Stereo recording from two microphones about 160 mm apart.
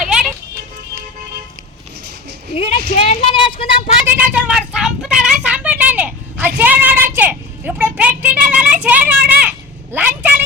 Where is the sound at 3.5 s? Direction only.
30° left (ahead or behind).